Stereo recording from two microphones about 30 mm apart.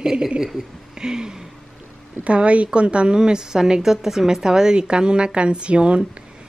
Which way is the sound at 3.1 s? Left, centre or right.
Right.